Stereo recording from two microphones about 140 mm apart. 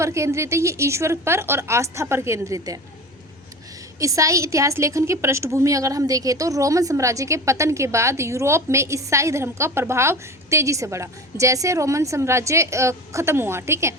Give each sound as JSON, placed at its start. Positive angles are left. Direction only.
{"t": 0.0, "sound": "a woman's voice", "side_deg": -20}
{"t": 4.0, "sound": "a woman's voice", "side_deg": -25}